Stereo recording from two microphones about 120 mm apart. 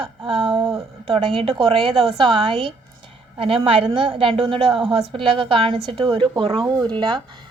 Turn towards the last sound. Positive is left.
turn(degrees=-40)  # may be behind; listen again after turning